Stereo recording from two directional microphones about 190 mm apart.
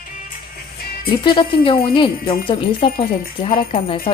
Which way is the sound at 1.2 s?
25° left (ahead or behind).